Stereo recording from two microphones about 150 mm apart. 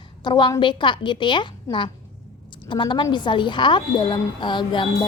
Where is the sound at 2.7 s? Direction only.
30° left (ahead or behind).